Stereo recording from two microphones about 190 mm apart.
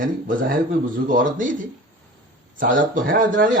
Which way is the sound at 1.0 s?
45° right (ahead or behind).